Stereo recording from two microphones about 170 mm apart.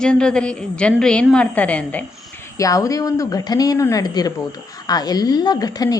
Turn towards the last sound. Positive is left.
turn(degrees=20)  # may be behind; listen again after turning